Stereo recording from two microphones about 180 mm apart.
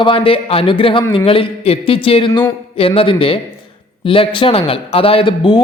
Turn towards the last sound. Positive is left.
turn(degrees=25)  # may be behind; listen again after turning